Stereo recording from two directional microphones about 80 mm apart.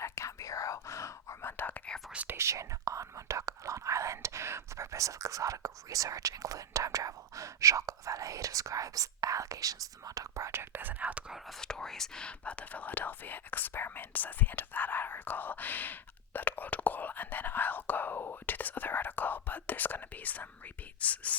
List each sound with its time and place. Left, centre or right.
0.0 s whispering: left
2.1 s speech: right
11.6 s speech: centre